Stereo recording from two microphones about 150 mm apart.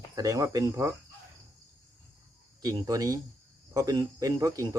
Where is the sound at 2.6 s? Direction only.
25° right (ahead or behind).